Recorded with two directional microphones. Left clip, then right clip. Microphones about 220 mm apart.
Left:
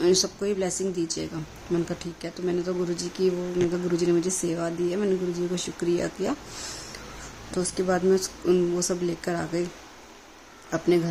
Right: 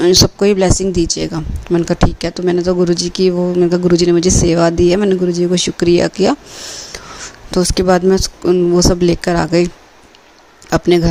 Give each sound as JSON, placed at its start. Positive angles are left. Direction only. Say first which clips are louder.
{"t": 0.0, "sound": "speech", "louder": "right 13 dB", "side_deg": -35}
{"t": 7.5, "sound": "speech", "louder": "right 13 dB", "side_deg": -40}
{"t": 10.7, "sound": "speech", "louder": "right 11 dB", "side_deg": -40}